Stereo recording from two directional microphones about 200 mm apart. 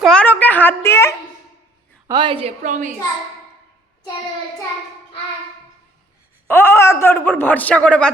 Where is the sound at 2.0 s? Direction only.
25° right (ahead or behind).